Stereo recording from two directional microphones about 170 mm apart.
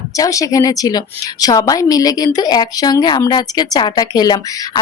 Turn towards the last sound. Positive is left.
turn(degrees=25)  # may be behind; listen again after turning